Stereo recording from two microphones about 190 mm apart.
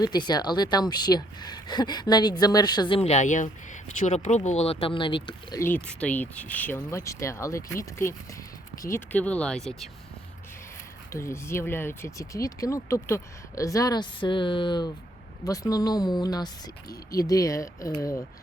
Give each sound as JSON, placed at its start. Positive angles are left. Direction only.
{"t": 0.0, "sound": "speech", "side_deg": 20}
{"t": 5.6, "sound": "speech", "side_deg": 5}
{"t": 11.1, "sound": "speech", "side_deg": 15}